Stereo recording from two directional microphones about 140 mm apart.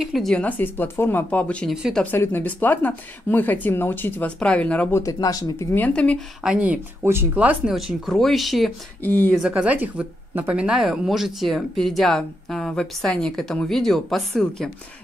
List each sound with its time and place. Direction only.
0.0 s speech: centre (ahead or behind)
1.7 s speech: centre (ahead or behind)
2.0 s speech: 15° left (ahead or behind)
5.0 s speech: 25° left (ahead or behind); by 6.2 s 5° left (ahead or behind)
6.4 s speech: 10° right (ahead or behind)
9.0 s speech: 15° left (ahead or behind)
9.4 s speech: 10° right (ahead or behind)